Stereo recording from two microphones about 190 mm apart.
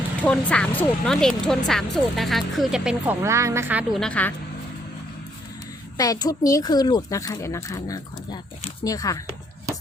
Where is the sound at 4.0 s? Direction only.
5° left (ahead or behind).